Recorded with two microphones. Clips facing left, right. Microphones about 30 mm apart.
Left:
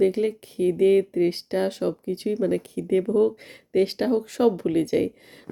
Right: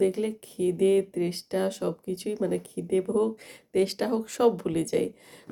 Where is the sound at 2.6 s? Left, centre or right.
Left.